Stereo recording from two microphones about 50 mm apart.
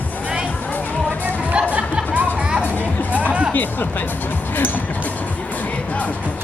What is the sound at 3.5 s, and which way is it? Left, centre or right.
Speech, left.